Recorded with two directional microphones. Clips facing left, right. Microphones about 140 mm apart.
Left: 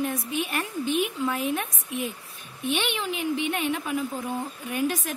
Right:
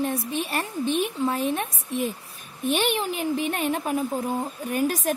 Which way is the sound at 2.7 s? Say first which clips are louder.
Right 4 dB; 40° right (ahead or behind).